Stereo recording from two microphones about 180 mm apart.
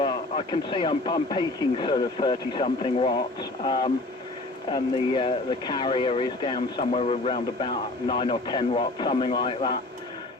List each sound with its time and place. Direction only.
0.0 s speech: 30° left (ahead or behind)